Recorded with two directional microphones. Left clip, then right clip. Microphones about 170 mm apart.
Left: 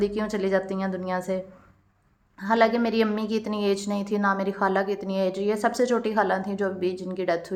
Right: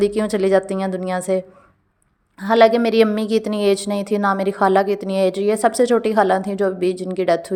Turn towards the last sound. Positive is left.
turn(degrees=-45)  # may be behind; listen again after turning